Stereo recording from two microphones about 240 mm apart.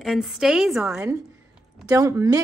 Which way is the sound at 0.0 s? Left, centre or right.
Centre.